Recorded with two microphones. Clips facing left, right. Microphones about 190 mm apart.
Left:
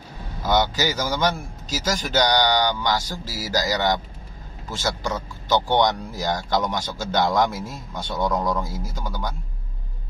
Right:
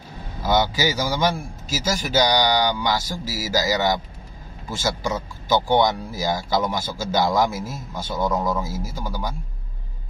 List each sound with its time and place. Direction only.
0.4 s speech: 10° right (ahead or behind)